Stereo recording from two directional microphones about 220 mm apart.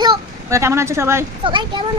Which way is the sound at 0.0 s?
15° right (ahead or behind).